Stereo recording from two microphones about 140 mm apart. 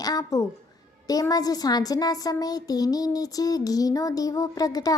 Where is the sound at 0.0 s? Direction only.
25° left (ahead or behind).